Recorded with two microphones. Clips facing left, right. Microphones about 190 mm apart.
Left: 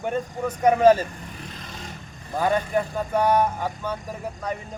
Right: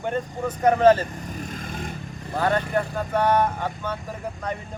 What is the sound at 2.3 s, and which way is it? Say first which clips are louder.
Speech: even; 10° left (ahead or behind).